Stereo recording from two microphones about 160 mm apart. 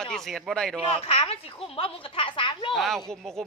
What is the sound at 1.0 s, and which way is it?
A woman's voice, 40° left (ahead or behind).